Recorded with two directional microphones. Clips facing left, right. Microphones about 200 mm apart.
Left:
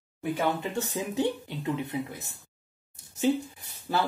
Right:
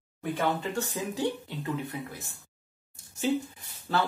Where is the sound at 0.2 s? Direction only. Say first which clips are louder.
Left 1 dB; 10° left (ahead or behind).